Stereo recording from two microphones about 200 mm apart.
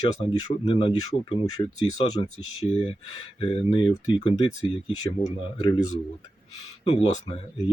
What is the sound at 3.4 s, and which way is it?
Speech, 25° left (ahead or behind).